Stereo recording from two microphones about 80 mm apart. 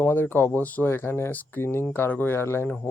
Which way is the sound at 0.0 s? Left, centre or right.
Left.